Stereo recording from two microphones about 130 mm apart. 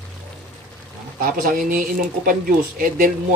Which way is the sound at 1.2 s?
90° right.